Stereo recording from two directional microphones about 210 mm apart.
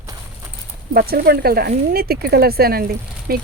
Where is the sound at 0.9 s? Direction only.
45° right (ahead or behind).